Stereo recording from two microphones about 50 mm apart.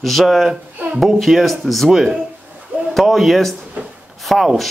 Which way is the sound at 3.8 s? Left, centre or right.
Right.